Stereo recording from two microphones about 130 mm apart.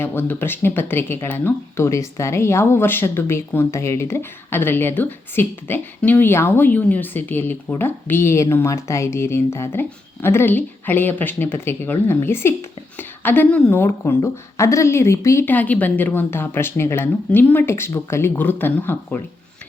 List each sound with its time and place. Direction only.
0.0 s speech: 15° left (ahead or behind)